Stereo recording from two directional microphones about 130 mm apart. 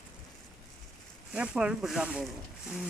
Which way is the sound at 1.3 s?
5° right (ahead or behind).